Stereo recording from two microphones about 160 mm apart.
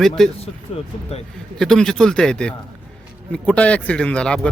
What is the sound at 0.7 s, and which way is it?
Music, 40° left (ahead or behind).